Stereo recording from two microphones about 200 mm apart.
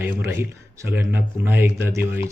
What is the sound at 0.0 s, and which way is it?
Speech, 10° right (ahead or behind).